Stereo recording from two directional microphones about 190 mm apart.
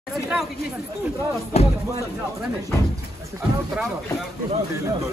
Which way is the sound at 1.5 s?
35° left (ahead or behind).